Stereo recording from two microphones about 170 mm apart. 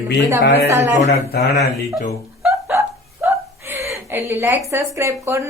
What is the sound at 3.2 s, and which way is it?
A woman's voice, 15° right (ahead or behind).